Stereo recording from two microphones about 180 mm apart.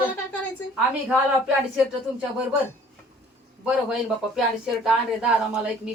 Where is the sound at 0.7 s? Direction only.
5° right (ahead or behind).